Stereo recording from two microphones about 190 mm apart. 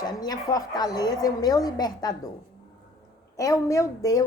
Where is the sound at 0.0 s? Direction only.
20° left (ahead or behind).